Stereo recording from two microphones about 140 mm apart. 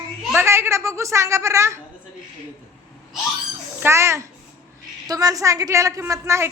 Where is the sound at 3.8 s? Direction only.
20° right (ahead or behind).